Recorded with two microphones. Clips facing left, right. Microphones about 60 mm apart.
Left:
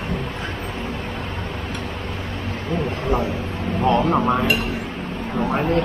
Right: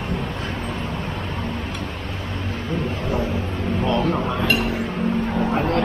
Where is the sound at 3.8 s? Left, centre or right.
Left.